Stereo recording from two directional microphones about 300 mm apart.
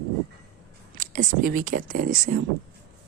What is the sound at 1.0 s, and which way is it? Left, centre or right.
Speech, right.